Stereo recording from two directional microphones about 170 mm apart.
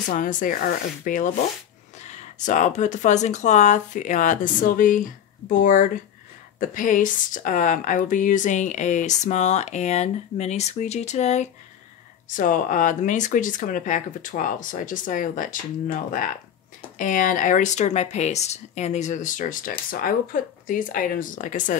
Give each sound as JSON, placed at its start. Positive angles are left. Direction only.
{"t": 0.1, "sound": "speech", "side_deg": 50}